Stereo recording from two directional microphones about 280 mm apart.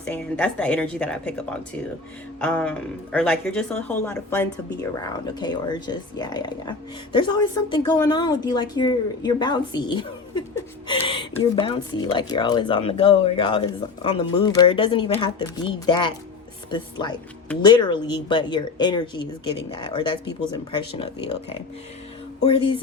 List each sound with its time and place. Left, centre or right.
0.0 s speech: centre
2.4 s speech: centre; by 21.3 s left
22.4 s speech: centre